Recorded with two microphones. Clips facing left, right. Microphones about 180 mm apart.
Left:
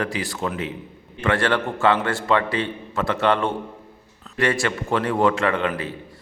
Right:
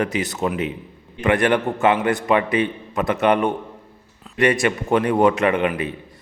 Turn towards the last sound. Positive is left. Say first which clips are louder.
# right 3 dB
turn(degrees=-15)  # may be behind; listen again after turning